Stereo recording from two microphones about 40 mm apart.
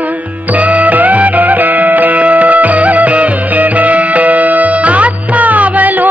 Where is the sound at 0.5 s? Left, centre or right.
Right.